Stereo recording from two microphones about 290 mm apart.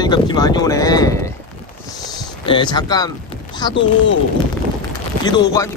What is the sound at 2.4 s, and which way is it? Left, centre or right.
Speech, centre.